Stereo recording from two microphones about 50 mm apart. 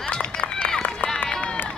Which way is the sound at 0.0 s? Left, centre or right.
Left.